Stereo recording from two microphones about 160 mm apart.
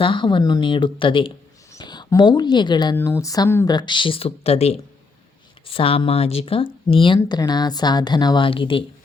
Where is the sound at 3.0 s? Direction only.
15° left (ahead or behind).